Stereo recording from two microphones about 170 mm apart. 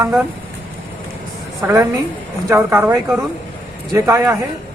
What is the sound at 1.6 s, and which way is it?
A man's voice, 15° right (ahead or behind).